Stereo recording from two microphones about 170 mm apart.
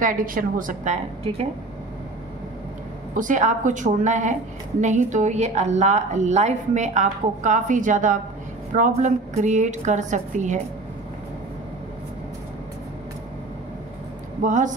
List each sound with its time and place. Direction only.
0.0 s a woman's voice: 55° right (ahead or behind)
3.2 s a woman's voice: 50° right (ahead or behind)
14.4 s a woman's voice: 50° right (ahead or behind)